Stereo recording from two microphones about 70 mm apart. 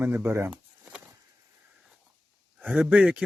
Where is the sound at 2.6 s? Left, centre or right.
Right.